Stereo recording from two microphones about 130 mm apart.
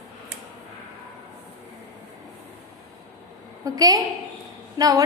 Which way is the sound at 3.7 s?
30° right (ahead or behind).